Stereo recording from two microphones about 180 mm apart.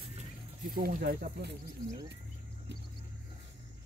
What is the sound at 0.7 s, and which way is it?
Speech, 55° right (ahead or behind).